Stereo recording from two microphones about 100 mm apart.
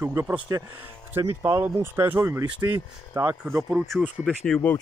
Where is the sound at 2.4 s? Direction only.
45° right (ahead or behind).